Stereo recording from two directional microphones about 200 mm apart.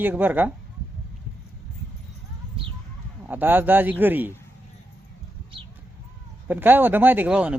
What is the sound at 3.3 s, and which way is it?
A man's voice, 10° right (ahead or behind).